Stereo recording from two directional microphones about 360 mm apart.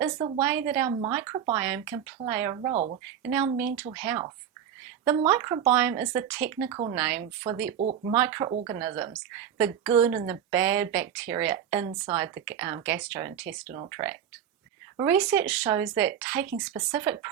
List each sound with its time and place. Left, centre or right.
0.0 s speech: centre
3.6 s speech: centre
5.3 s speech: centre
7.8 s speech: centre
8.1 s speech: centre
13.4 s speech: right
13.7 s speech: centre